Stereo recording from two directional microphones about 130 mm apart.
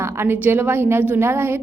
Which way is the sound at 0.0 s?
15° right (ahead or behind).